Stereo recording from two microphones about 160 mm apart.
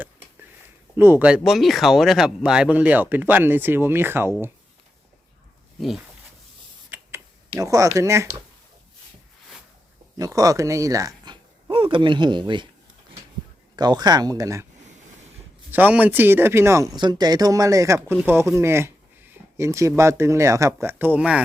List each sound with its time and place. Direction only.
0.9 s speech: 15° right (ahead or behind)
6.9 s a sound: 10° right (ahead or behind)
7.6 s speech: 20° right (ahead or behind)
10.2 s speech: 20° right (ahead or behind)
11.7 s speech: 35° right (ahead or behind)
13.7 s speech: 25° right (ahead or behind)
15.7 s speech: 10° right (ahead or behind)